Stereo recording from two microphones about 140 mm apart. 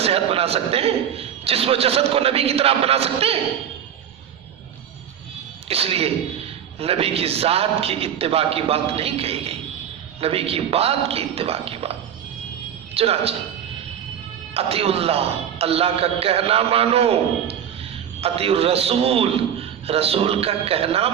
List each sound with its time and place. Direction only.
0.0 s a man's voice: 45° right (ahead or behind)
5.6 s a man's voice: 45° right (ahead or behind)
14.5 s a man's voice: 45° right (ahead or behind)